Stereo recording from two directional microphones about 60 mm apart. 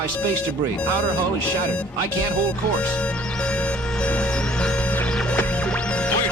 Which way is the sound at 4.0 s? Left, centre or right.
Centre.